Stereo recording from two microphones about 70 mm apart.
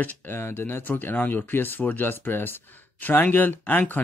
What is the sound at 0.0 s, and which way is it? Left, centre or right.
Speech, left.